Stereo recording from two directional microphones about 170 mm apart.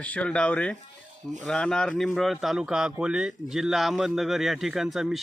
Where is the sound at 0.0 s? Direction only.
10° left (ahead or behind).